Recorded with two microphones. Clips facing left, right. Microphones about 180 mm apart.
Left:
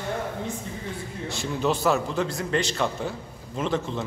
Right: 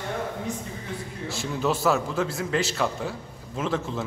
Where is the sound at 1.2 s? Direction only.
Centre (ahead or behind).